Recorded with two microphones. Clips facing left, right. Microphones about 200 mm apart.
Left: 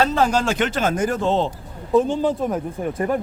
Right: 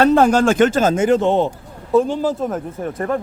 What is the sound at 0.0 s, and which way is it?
Speech, 55° right (ahead or behind).